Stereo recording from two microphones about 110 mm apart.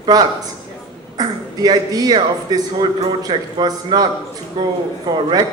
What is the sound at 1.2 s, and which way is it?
A man's voice, 35° right (ahead or behind).